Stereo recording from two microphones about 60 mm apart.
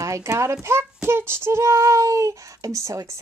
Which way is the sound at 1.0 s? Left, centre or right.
Right.